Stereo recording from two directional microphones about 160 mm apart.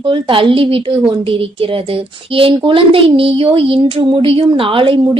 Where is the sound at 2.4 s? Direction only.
35° right (ahead or behind).